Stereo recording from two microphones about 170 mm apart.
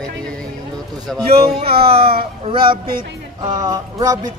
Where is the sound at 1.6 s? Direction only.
35° right (ahead or behind).